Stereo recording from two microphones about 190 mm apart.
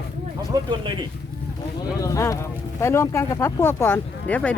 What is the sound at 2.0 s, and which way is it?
Speech, 15° left (ahead or behind).